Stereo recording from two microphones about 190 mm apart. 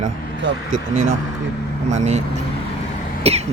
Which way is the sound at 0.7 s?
40° right (ahead or behind).